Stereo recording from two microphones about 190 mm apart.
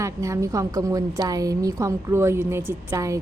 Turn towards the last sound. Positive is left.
turn(degrees=-15)  # may be behind; listen again after turning